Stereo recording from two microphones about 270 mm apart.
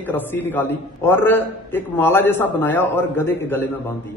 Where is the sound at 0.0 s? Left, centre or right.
Centre.